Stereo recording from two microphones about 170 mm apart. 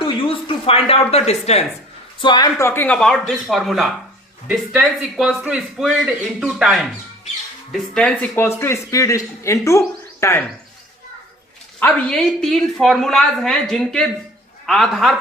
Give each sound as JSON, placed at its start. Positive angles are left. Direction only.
{"t": 0.0, "sound": "a sound", "side_deg": 30}
{"t": 1.3, "sound": "speech", "side_deg": 40}
{"t": 2.2, "sound": "a man's voice", "side_deg": 25}
{"t": 11.8, "sound": "speech", "side_deg": 10}